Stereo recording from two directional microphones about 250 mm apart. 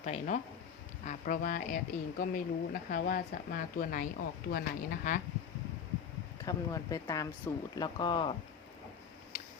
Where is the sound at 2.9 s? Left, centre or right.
Left.